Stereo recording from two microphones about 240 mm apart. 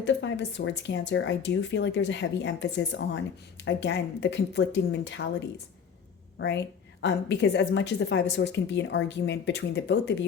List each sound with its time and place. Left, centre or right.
0.0 s a woman's voice: left
7.0 s a woman's voice: left